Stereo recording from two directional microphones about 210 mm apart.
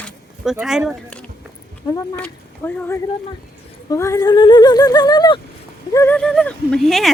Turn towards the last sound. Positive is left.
turn(degrees=0)  # may be behind; listen again after turning